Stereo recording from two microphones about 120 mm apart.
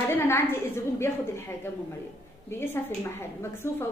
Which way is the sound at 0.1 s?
15° left (ahead or behind).